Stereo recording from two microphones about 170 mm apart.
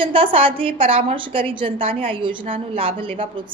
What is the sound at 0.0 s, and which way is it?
A woman's voice, 30° right (ahead or behind).